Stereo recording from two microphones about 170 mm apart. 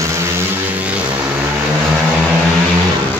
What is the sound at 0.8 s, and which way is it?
Vehicle, 10° right (ahead or behind).